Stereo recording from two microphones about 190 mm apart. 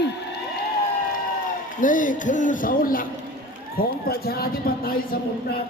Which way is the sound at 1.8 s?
45° left (ahead or behind).